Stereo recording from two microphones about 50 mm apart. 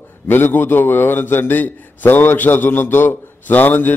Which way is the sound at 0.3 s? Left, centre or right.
Left.